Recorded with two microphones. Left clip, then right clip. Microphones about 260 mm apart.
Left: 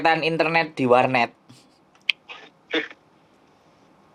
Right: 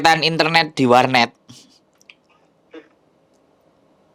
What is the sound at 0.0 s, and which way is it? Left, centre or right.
Speech, right.